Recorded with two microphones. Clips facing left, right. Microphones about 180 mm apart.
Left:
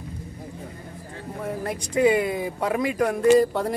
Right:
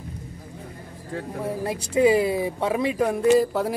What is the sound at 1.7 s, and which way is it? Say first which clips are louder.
Speech: right 1 dB; 30° right (ahead or behind).